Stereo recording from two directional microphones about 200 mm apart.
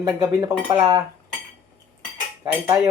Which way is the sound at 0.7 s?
15° right (ahead or behind).